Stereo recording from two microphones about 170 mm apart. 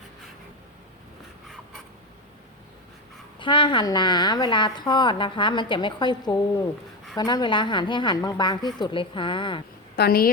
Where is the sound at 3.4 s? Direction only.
30° left (ahead or behind).